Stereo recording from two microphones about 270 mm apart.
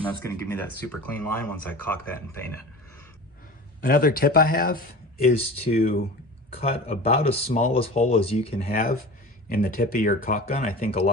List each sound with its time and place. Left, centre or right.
0.0 s speech: centre
3.8 s speech: left
6.6 s speech: left
8.7 s speech: left